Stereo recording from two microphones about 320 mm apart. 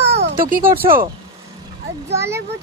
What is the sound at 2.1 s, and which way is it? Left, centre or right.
Speech, centre.